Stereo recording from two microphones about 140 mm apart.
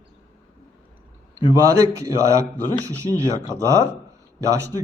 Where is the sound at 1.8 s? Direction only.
25° right (ahead or behind).